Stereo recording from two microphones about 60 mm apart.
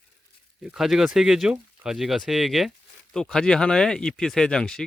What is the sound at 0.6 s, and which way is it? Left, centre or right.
Speech, centre.